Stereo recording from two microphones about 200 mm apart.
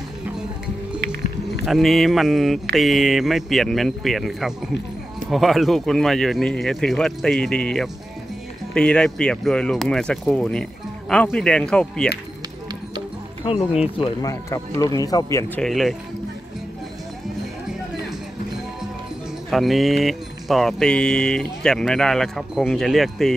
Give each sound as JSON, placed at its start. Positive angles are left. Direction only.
{"t": 1.7, "sound": "speech", "side_deg": 0}
{"t": 13.4, "sound": "speech", "side_deg": 30}
{"t": 15.6, "sound": "speech", "side_deg": 0}
{"t": 19.5, "sound": "speech", "side_deg": 0}